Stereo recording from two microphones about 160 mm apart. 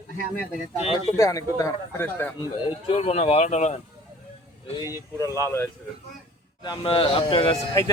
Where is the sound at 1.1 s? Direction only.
20° left (ahead or behind).